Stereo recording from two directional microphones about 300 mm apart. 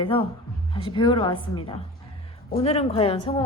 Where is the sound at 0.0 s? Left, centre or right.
Centre.